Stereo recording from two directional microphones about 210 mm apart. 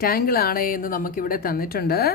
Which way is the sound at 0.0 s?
45° left (ahead or behind).